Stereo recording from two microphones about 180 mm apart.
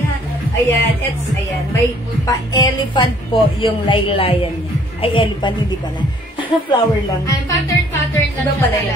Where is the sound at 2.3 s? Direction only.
20° left (ahead or behind).